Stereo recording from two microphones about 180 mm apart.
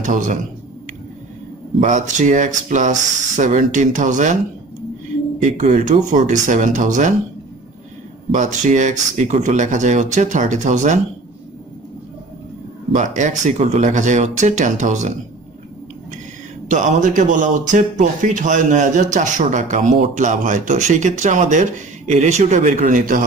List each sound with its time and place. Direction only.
0.0 s speech: 45° right (ahead or behind)
1.8 s speech: 45° right (ahead or behind)
5.4 s speech: 40° right (ahead or behind)
8.3 s speech: 45° right (ahead or behind)
12.9 s speech: 40° right (ahead or behind)
16.6 s speech: 45° right (ahead or behind)